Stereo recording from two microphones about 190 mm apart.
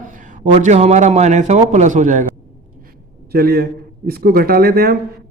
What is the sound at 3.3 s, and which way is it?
A man's voice, 50° right (ahead or behind).